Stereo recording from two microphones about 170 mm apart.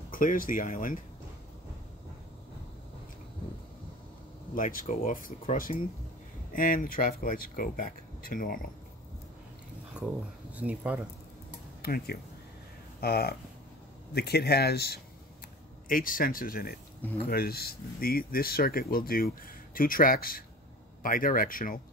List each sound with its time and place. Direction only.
0.1 s speech: 55° left (ahead or behind)
4.6 s speech: 50° left (ahead or behind)
9.9 s speech: 5° right (ahead or behind)
11.8 s speech: 65° left (ahead or behind)
15.9 s speech: 55° left (ahead or behind)